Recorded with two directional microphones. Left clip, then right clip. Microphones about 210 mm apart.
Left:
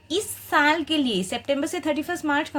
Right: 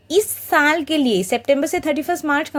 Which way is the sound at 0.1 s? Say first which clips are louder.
Right 7 dB; 30° right (ahead or behind).